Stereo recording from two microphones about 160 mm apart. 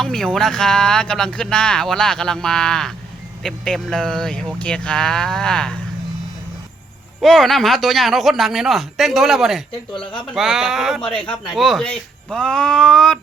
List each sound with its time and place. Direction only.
0.0 s speech: 5° left (ahead or behind)
7.2 s speech: centre (ahead or behind)
9.9 s speech: 30° left (ahead or behind)
10.3 s speech: centre (ahead or behind)